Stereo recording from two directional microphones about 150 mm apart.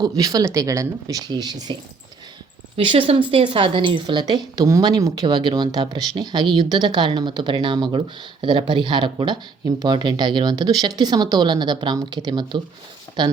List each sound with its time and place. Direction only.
0.2 s speech: 25° right (ahead or behind)
2.7 s speech: 35° right (ahead or behind)